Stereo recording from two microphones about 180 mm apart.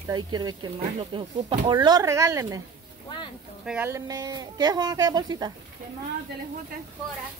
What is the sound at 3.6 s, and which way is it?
Speech, 10° right (ahead or behind).